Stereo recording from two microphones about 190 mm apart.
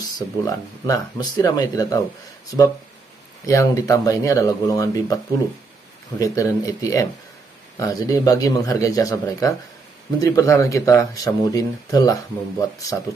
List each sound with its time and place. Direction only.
0.5 s speech: 20° left (ahead or behind)